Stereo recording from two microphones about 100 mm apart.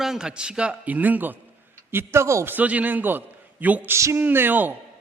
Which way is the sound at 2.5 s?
15° right (ahead or behind).